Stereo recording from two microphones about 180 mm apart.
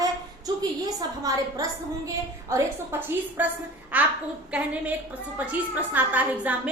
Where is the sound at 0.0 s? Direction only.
20° right (ahead or behind).